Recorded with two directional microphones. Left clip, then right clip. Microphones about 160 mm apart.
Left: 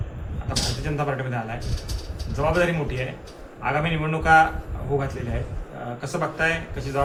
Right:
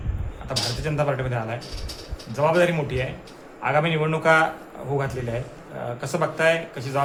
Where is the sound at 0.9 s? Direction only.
75° right (ahead or behind).